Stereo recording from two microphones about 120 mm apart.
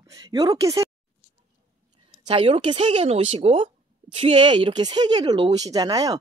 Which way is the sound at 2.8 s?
65° right (ahead or behind).